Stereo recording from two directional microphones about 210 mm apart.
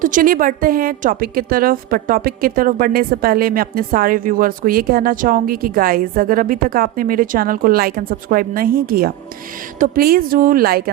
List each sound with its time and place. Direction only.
0.0 s a woman's voice: 40° right (ahead or behind)